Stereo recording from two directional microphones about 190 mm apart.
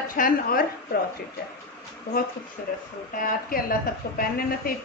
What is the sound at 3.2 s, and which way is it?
Speech, 45° left (ahead or behind).